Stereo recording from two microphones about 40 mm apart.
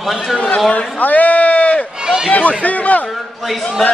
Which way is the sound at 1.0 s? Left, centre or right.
Left.